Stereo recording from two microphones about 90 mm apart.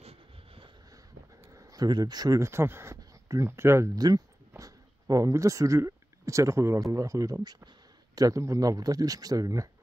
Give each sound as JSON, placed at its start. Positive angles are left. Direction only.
{"t": 1.5, "sound": "a sound", "side_deg": -40}
{"t": 1.9, "sound": "speech", "side_deg": -50}
{"t": 2.4, "sound": "speech", "side_deg": -30}
{"t": 4.0, "sound": "speech", "side_deg": -45}